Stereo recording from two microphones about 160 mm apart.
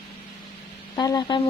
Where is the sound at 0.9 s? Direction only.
25° left (ahead or behind).